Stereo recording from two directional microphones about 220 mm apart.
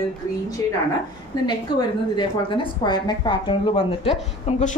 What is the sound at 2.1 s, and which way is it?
Speech, 20° left (ahead or behind).